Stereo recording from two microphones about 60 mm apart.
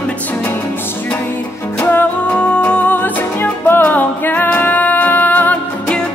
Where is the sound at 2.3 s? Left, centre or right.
Left.